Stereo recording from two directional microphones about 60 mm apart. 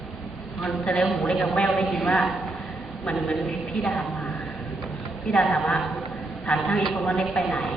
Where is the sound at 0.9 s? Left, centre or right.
Centre.